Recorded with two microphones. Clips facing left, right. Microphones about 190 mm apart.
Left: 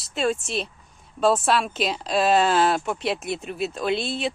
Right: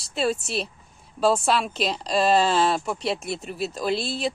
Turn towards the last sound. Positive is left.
turn(degrees=0)  # may be behind; listen again after turning